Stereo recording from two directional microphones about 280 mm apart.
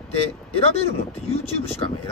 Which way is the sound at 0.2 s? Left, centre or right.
Left.